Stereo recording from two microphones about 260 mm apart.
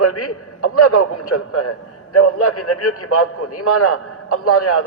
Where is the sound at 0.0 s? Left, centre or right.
Left.